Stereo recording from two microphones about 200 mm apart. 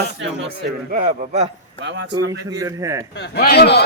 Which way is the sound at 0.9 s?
40° right (ahead or behind).